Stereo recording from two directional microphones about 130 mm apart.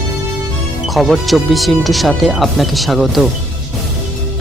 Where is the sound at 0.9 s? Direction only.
Centre (ahead or behind).